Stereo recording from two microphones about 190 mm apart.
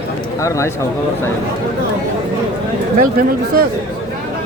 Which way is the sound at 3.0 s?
50° right (ahead or behind).